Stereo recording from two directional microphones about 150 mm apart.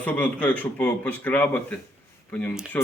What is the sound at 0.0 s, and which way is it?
Speech, 10° left (ahead or behind).